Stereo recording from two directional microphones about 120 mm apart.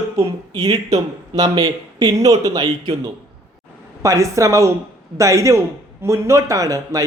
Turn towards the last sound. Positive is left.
turn(degrees=-30)  # may be behind; listen again after turning